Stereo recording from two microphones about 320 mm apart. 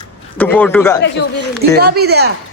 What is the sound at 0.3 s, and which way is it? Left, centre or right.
Speech, centre.